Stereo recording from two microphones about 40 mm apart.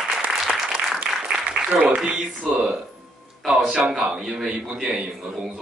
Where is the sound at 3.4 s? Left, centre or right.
Right.